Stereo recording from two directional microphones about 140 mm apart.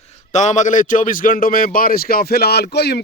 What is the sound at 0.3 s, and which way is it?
A man's voice, 60° left (ahead or behind).